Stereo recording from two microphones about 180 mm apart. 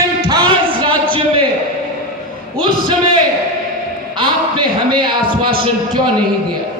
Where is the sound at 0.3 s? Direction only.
25° right (ahead or behind).